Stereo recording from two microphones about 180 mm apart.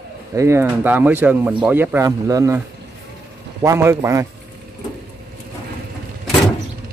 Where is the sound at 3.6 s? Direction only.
15° right (ahead or behind).